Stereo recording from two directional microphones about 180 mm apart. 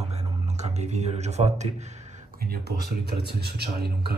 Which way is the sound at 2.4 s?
60° right (ahead or behind).